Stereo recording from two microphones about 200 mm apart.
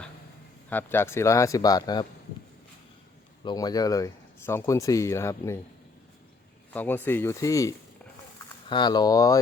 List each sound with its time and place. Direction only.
0.7 s speech: 10° left (ahead or behind)
3.4 s speech: 20° left (ahead or behind)
6.7 s speech: 10° left (ahead or behind)